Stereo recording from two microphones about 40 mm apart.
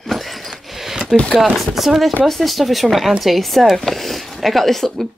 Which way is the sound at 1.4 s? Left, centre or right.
Centre.